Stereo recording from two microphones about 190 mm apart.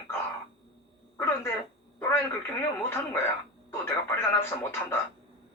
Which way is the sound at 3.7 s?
10° left (ahead or behind).